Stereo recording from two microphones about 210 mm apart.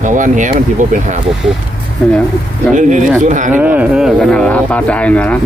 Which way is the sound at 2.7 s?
35° right (ahead or behind).